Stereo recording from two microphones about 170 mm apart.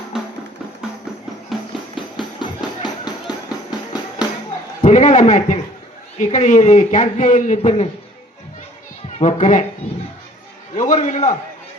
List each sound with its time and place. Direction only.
1.5 s music: centre (ahead or behind)
2.0 s music: 30° left (ahead or behind)
4.9 s a man's voice: 45° left (ahead or behind)
9.1 s a man's voice: 45° left (ahead or behind)
10.8 s a man's voice: 45° left (ahead or behind)